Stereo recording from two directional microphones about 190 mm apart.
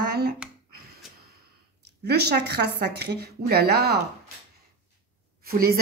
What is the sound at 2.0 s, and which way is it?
Speech, 55° right (ahead or behind).